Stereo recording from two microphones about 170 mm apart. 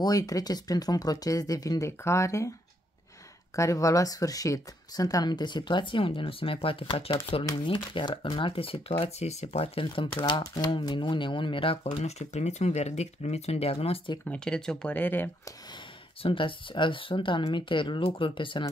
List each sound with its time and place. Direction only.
0.0 s speech: 20° left (ahead or behind)
3.5 s speech: 20° left (ahead or behind)
14.2 s speech: 5° left (ahead or behind)
16.2 s speech: 30° left (ahead or behind)